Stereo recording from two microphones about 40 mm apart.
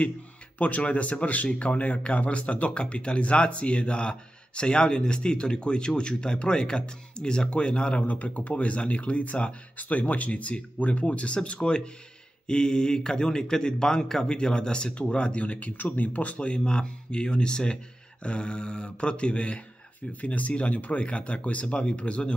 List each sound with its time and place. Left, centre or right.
0.6 s speech: left
8.1 s speech: left